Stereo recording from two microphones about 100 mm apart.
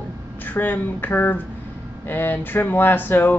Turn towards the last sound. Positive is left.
turn(degrees=20)  # may be behind; listen again after turning